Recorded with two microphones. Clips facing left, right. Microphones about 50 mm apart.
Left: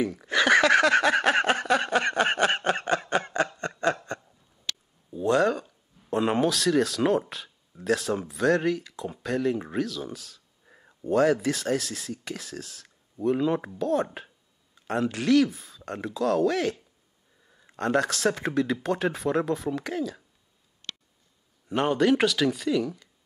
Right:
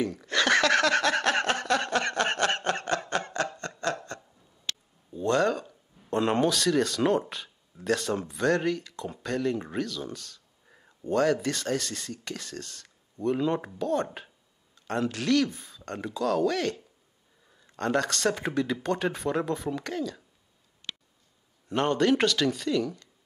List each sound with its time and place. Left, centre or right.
0.0 s a sound: centre
3.5 s snicker: centre
5.1 s speech: centre
21.6 s speech: centre